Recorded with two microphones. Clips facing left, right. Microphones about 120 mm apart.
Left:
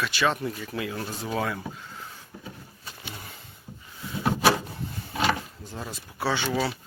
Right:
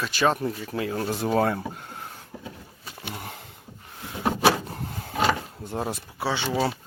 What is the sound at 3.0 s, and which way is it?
Sniff, 55° right (ahead or behind).